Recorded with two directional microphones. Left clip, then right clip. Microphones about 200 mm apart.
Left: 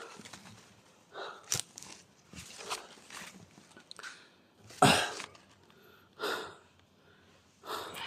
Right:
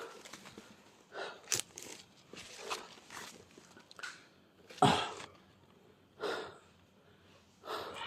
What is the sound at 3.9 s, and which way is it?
Biting, 20° left (ahead or behind).